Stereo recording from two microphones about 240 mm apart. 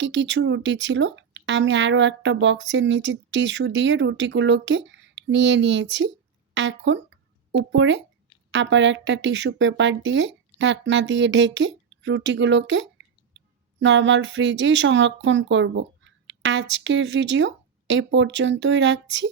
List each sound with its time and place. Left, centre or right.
0.0 s speech: right